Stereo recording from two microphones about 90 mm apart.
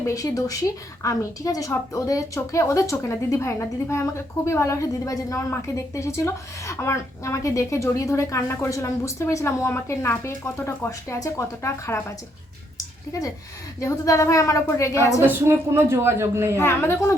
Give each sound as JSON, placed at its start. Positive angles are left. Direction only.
{"t": 0.0, "sound": "speech", "side_deg": 40}
{"t": 12.7, "sound": "a sound", "side_deg": 40}
{"t": 13.8, "sound": "speech", "side_deg": 40}
{"t": 15.2, "sound": "speech", "side_deg": -25}
{"t": 16.6, "sound": "a woman's voice", "side_deg": 30}